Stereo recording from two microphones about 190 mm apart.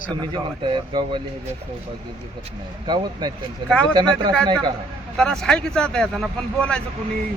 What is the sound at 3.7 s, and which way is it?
Speech, 5° left (ahead or behind).